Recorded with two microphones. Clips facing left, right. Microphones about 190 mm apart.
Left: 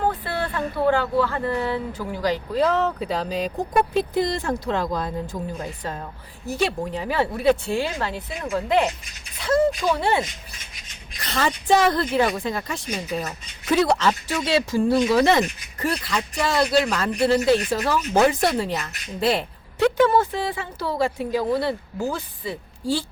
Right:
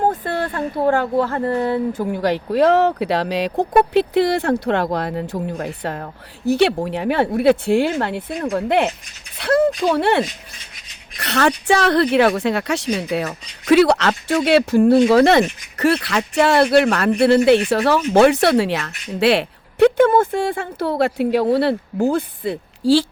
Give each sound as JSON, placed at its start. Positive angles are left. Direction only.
{"t": 0.0, "sound": "a woman's voice", "side_deg": -45}
{"t": 20.0, "sound": "speech", "side_deg": -50}